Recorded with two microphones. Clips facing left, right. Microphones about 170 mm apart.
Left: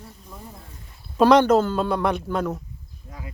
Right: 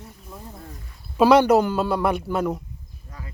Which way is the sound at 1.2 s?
5° right (ahead or behind).